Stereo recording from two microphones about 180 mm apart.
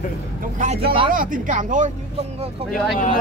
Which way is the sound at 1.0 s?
50° right (ahead or behind).